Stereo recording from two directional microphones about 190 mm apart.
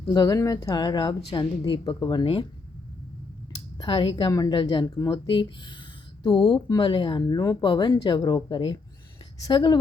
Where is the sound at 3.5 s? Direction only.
25° left (ahead or behind).